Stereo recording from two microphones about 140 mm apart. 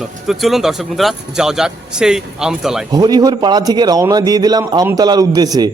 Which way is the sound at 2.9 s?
25° right (ahead or behind).